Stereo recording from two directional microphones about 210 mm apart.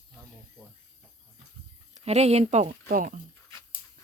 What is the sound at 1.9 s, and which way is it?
Speech, 30° right (ahead or behind).